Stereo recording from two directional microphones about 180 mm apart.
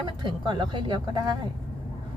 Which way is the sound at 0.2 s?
25° right (ahead or behind).